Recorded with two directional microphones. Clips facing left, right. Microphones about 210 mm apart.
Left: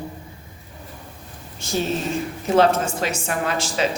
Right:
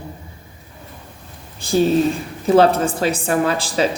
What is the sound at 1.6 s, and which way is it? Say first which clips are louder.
Speech: right 9 dB; 35° right (ahead or behind).